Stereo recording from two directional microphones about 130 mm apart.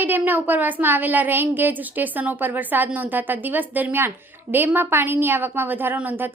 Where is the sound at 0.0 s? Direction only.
15° right (ahead or behind).